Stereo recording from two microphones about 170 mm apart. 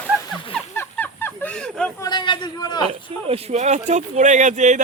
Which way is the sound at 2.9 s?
35° right (ahead or behind).